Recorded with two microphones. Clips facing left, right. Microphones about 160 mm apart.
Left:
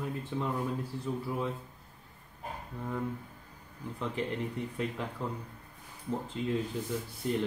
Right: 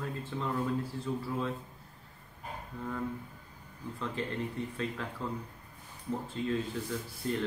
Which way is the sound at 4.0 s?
15° left (ahead or behind).